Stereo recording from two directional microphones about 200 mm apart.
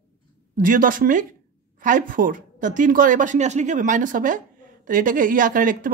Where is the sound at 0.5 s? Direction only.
40° right (ahead or behind).